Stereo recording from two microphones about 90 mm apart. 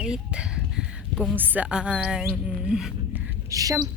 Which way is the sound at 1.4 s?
20° right (ahead or behind).